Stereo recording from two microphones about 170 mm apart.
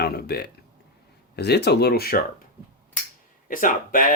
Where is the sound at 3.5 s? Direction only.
50° left (ahead or behind).